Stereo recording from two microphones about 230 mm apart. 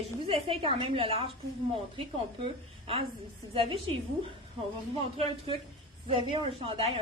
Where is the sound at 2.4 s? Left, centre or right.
Right.